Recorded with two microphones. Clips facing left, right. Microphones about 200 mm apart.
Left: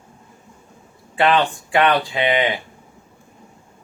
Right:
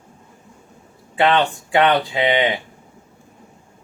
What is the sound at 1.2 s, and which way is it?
Speech, 25° right (ahead or behind).